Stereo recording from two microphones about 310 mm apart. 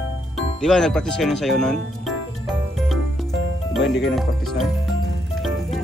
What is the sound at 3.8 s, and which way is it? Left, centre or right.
Speech, left.